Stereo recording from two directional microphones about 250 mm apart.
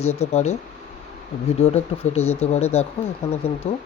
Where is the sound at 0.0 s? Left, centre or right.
Left.